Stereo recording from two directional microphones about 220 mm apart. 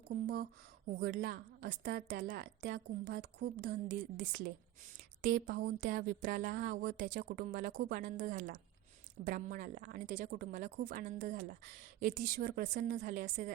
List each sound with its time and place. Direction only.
0.1 s a woman's voice: 45° right (ahead or behind)